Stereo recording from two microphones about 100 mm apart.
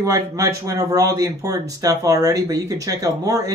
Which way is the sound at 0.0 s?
35° right (ahead or behind).